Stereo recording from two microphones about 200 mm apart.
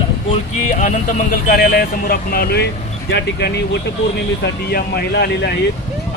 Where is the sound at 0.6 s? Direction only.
40° left (ahead or behind); by 5.5 s 55° left (ahead or behind).